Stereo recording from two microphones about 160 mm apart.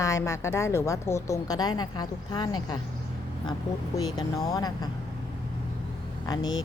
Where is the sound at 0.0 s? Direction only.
15° left (ahead or behind).